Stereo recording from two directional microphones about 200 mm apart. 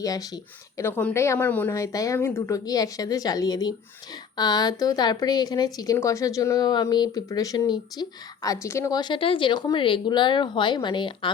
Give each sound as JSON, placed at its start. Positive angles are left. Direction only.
{"t": 0.0, "sound": "a woman's voice", "side_deg": 20}